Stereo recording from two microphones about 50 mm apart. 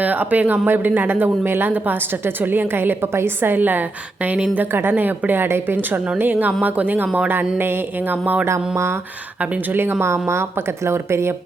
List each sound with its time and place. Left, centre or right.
0.0 s speech: right
1.1 s a woman's voice: right
4.5 s a woman's voice: right
7.6 s speech: right
8.4 s speech: right
9.4 s speech: right
9.7 s speech: right